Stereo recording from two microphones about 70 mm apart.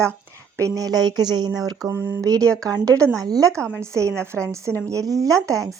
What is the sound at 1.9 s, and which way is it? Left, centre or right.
Speech, right.